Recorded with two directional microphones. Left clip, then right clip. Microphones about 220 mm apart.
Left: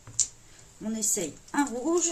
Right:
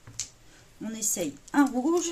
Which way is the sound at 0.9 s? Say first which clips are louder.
Left 1 dB; 25° right (ahead or behind).